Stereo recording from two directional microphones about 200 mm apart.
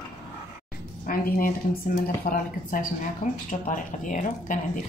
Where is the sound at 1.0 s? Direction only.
45° left (ahead or behind).